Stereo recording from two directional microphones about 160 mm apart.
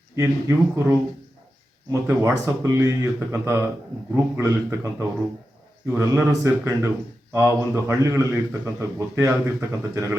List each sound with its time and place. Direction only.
0.2 s a man's voice: 15° right (ahead or behind)